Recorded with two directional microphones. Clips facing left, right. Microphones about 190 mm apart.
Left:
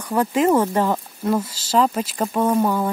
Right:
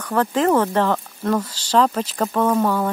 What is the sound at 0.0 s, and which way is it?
Speech, 10° left (ahead or behind).